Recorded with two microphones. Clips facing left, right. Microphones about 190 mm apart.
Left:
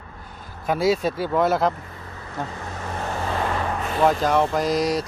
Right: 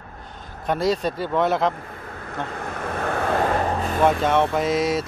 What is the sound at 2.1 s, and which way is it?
Vehicle, 55° right (ahead or behind).